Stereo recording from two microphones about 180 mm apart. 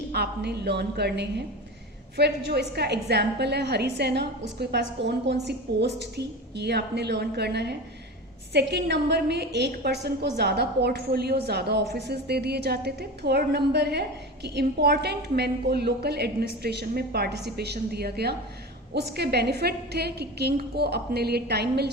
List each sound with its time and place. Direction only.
0.1 s a woman's voice: 65° right (ahead or behind)